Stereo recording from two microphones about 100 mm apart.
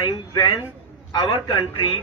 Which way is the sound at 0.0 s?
45° left (ahead or behind).